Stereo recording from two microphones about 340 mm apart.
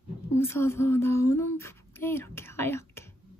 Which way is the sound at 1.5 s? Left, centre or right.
Centre.